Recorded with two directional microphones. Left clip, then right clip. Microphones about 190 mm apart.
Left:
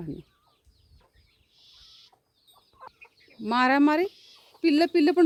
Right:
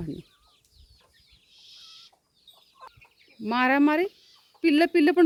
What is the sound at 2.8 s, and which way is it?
Chicken, 40° right (ahead or behind).